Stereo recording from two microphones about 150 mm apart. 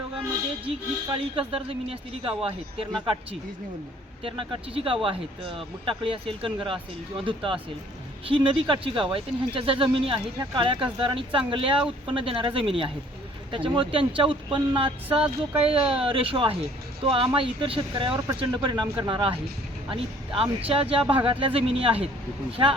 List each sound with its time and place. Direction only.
1.0 s speech: 35° right (ahead or behind)
4.2 s speech: 40° right (ahead or behind)